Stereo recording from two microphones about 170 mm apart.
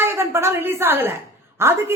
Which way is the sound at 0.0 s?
15° right (ahead or behind).